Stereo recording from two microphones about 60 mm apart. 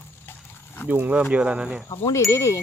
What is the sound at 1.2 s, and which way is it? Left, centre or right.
Speech, centre.